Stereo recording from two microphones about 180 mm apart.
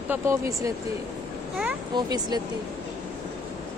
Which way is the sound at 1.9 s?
20° right (ahead or behind).